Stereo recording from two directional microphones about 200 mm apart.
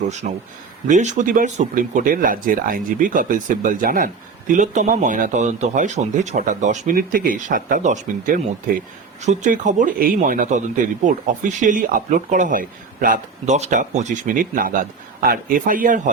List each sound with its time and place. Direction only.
0.2 s speech: 40° right (ahead or behind)